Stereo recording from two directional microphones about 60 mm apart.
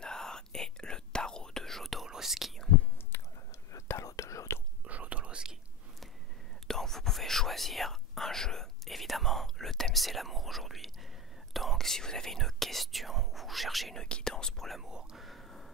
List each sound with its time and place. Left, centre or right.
0.0 s whispering: centre
2.0 s speech: centre
3.1 s whispering: left
3.7 s whispering: left
4.8 s whispering: right
6.7 s speech: centre
14.0 s speech: centre
14.9 s speech: centre
15.2 s a sound: centre